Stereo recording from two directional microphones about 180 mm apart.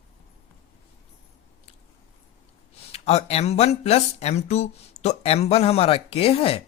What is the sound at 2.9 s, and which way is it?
Speech, 35° left (ahead or behind).